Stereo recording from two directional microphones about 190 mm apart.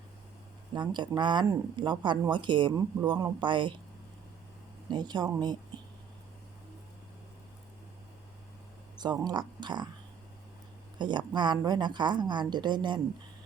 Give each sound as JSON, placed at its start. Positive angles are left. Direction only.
{"t": 0.7, "sound": "a woman's voice", "side_deg": -25}
{"t": 4.9, "sound": "a woman's voice", "side_deg": -20}
{"t": 9.0, "sound": "a woman's voice", "side_deg": -20}
{"t": 10.9, "sound": "a woman's voice", "side_deg": -25}